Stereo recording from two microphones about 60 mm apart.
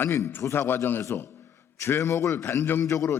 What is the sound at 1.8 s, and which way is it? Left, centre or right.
A man's voice, left.